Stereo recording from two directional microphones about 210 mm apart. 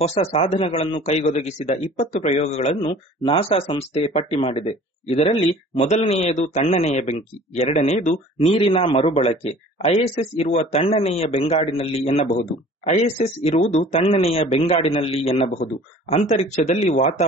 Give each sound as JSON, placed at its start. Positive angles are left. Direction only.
{"t": 0.0, "sound": "a man's voice", "side_deg": 30}